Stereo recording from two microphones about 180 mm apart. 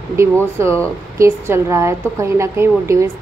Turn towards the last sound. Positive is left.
turn(degrees=-15)  # may be behind; listen again after turning